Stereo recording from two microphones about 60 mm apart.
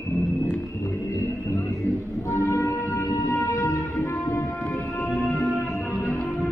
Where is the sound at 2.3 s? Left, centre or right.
Left.